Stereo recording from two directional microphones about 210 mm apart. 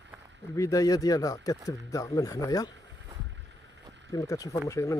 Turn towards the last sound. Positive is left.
turn(degrees=15)  # may be behind; listen again after turning